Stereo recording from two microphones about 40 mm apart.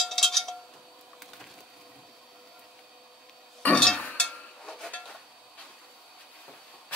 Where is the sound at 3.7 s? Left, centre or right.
Left.